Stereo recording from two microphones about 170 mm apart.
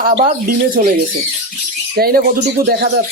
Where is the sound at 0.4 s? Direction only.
50° right (ahead or behind).